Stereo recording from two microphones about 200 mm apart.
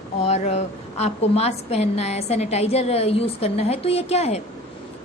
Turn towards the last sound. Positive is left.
turn(degrees=30)  # may be behind; listen again after turning